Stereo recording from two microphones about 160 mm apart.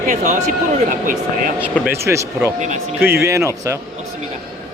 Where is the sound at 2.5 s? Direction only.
50° right (ahead or behind).